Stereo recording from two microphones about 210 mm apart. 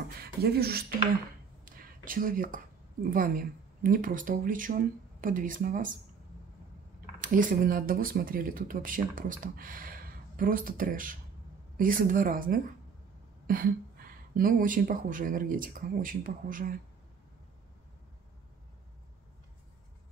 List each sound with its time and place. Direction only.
0.2 s speech: 50° right (ahead or behind)
7.2 s speech: 40° right (ahead or behind)